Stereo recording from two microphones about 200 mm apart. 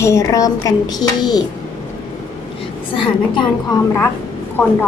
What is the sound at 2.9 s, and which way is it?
Speech, 25° left (ahead or behind).